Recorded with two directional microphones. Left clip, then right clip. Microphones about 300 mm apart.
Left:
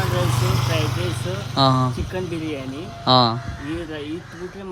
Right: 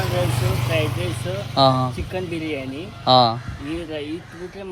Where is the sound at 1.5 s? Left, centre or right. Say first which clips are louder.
Right 2 dB; centre.